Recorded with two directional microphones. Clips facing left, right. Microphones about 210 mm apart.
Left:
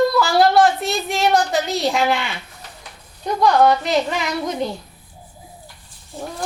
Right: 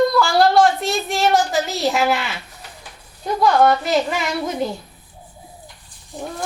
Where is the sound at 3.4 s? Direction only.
Centre (ahead or behind).